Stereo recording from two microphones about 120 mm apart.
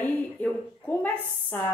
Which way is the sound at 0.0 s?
10° left (ahead or behind).